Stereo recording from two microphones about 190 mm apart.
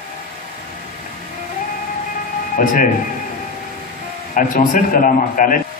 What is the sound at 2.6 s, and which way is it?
Speech, 45° left (ahead or behind).